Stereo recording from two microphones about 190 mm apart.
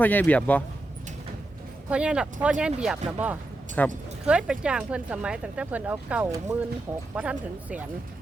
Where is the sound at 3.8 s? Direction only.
10° left (ahead or behind).